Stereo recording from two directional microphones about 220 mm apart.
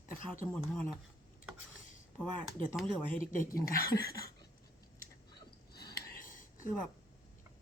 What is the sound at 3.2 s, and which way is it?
Speech, 35° left (ahead or behind).